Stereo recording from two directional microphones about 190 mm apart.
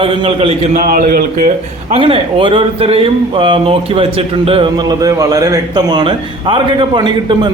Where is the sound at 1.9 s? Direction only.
30° right (ahead or behind).